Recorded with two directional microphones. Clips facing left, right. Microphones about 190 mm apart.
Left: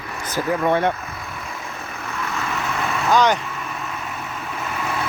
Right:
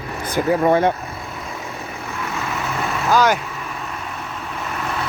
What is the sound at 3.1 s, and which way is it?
Speech, 5° right (ahead or behind).